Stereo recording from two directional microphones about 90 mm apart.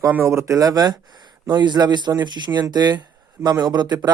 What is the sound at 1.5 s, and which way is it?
Speech, 50° right (ahead or behind).